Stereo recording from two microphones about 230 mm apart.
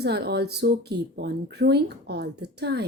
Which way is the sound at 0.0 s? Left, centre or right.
Right.